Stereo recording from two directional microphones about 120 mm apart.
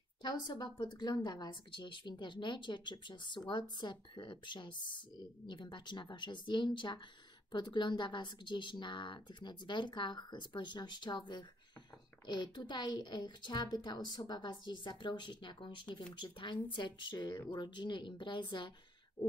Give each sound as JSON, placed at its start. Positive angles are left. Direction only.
{"t": 0.2, "sound": "a woman's voice", "side_deg": 35}